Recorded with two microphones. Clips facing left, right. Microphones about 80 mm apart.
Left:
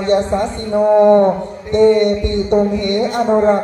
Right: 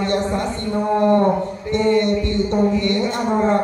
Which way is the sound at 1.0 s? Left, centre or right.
Left.